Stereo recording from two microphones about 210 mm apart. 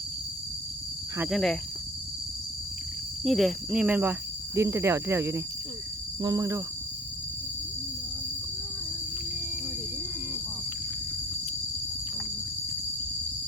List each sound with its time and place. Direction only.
1.3 s speech: centre (ahead or behind)
3.2 s cricket: centre (ahead or behind); by 6.6 s 15° right (ahead or behind)